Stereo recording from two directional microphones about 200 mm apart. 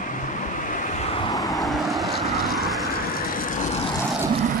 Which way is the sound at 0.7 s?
40° left (ahead or behind).